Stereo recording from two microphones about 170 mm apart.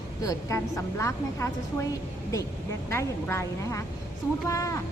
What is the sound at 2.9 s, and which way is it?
A woman's voice, 15° left (ahead or behind).